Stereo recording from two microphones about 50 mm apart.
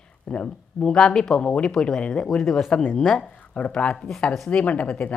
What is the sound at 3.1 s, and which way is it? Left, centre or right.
Speech, left.